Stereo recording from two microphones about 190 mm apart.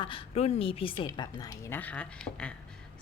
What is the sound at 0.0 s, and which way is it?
A woman's voice, 30° left (ahead or behind).